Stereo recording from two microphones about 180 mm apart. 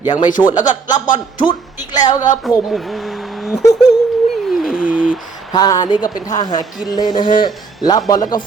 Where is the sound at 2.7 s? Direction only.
Centre (ahead or behind).